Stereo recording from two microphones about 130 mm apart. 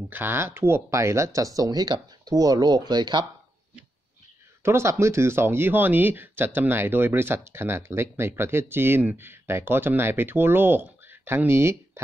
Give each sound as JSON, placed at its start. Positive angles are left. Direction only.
{"t": 0.1, "sound": "speech", "side_deg": -15}
{"t": 4.6, "sound": "speech", "side_deg": -20}